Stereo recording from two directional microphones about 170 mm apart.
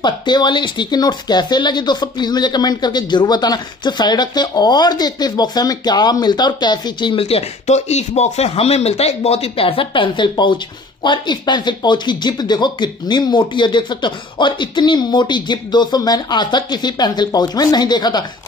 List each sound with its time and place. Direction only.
0.0 s speech: 25° left (ahead or behind)